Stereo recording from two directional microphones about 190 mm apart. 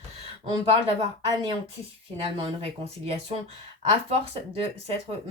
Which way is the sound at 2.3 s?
30° right (ahead or behind).